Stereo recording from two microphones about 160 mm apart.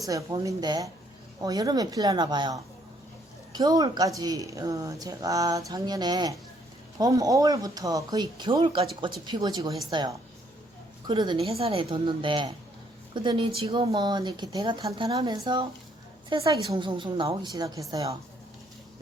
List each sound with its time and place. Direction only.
0.0 s speech: 20° right (ahead or behind)